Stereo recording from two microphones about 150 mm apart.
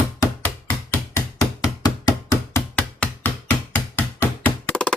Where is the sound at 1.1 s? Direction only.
20° left (ahead or behind).